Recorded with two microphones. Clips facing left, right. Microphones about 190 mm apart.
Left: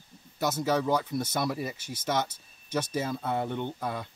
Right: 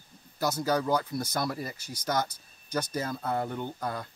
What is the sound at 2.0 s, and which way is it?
Speech, 5° left (ahead or behind).